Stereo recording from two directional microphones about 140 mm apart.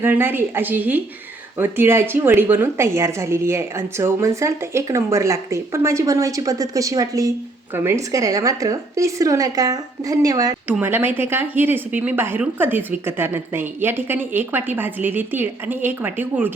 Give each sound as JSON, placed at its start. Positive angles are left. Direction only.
{"t": 0.0, "sound": "a woman's voice", "side_deg": -15}
{"t": 10.7, "sound": "speech", "side_deg": -15}